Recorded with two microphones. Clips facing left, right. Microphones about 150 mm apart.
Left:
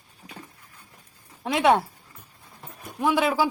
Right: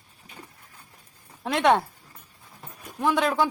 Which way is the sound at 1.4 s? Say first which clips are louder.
Left 1 dB; 5° left (ahead or behind).